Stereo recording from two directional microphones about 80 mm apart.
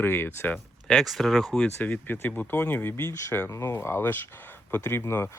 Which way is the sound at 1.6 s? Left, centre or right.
Left.